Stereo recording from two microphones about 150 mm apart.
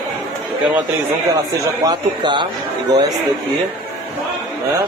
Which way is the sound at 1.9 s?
30° right (ahead or behind).